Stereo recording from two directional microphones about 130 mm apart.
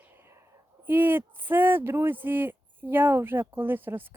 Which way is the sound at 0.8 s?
15° right (ahead or behind).